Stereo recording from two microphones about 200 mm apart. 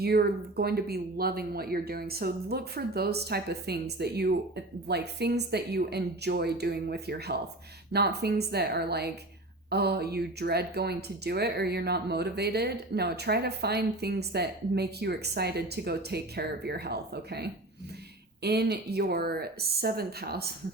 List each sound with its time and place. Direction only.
0.0 s speech: 50° right (ahead or behind)